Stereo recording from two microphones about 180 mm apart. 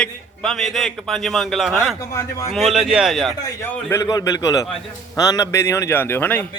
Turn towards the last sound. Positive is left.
turn(degrees=10)  # may be behind; listen again after turning